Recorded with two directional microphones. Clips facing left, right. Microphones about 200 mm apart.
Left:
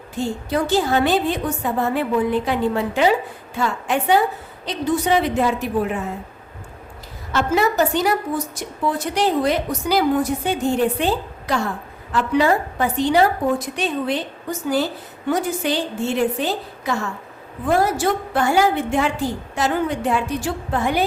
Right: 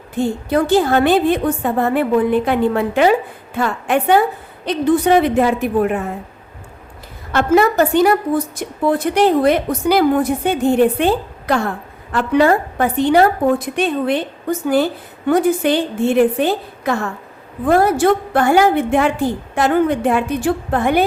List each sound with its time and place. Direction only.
0.1 s a woman's voice: 55° right (ahead or behind)
7.3 s a woman's voice: 55° right (ahead or behind)